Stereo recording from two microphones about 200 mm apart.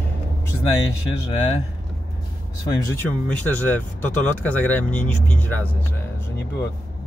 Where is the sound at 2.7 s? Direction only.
10° left (ahead or behind).